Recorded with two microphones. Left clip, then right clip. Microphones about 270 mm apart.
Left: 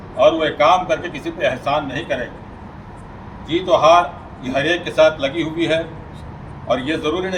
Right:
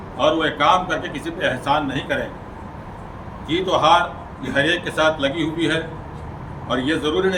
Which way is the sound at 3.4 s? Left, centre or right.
Centre.